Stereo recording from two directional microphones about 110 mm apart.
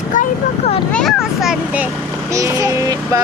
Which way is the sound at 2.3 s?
30° right (ahead or behind).